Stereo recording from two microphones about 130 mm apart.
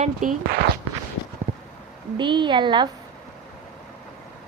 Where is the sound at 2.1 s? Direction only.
35° right (ahead or behind).